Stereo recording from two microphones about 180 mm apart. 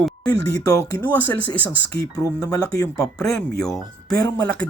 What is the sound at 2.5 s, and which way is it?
Speech, 15° left (ahead or behind).